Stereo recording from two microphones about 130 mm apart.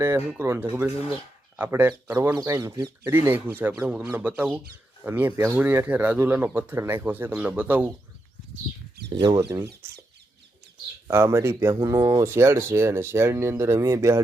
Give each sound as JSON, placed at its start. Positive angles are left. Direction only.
{"t": 0.3, "sound": "speech", "side_deg": -15}
{"t": 9.0, "sound": "speech", "side_deg": -25}
{"t": 11.1, "sound": "speech", "side_deg": -20}